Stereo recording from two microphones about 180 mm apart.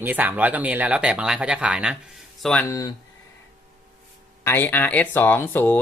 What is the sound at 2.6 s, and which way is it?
Speech, 20° left (ahead or behind).